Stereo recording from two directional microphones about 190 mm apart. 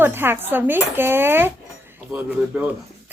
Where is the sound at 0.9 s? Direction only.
10° right (ahead or behind).